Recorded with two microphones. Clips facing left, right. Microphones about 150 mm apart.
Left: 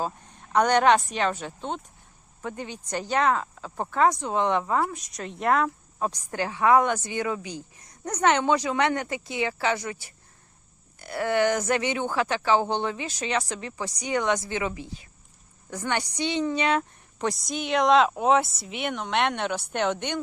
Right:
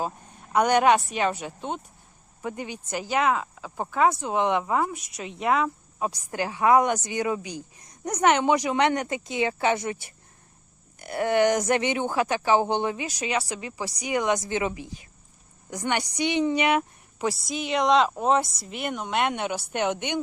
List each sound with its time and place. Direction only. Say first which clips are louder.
0.5 s speech: even; 10° right (ahead or behind)
5.1 s a woman's voice: left 1 dB; centre (ahead or behind)